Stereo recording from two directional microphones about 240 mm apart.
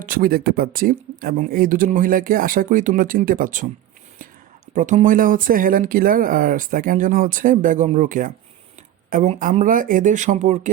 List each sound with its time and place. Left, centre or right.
0.0 s speech: right
4.7 s speech: right